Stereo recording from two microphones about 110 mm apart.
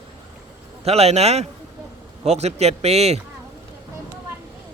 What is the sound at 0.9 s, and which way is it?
A man's voice, 75° right (ahead or behind).